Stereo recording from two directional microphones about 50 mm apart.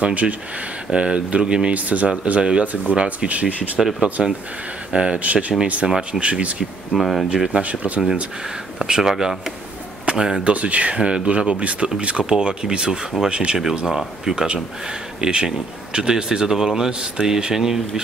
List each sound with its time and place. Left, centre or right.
0.0 s speech: right
1.7 s speech: right
4.2 s speech: centre
4.9 s speech: centre
5.9 s speech: centre
6.9 s speech: centre
7.5 s speech: right
8.7 s speech: centre
10.4 s speech: right
13.8 s speech: centre